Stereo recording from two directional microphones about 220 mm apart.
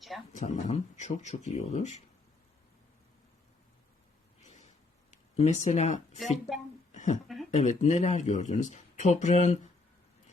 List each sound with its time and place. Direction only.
0.3 s speech: 30° left (ahead or behind)
5.1 s speech: 30° left (ahead or behind)
6.5 s a woman's voice: centre (ahead or behind)
6.9 s a sound: 35° left (ahead or behind)
7.5 s speech: 30° left (ahead or behind)